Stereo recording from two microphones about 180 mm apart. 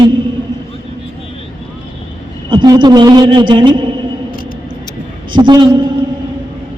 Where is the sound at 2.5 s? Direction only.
25° right (ahead or behind).